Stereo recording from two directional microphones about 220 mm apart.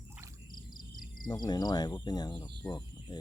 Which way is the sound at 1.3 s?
15° left (ahead or behind).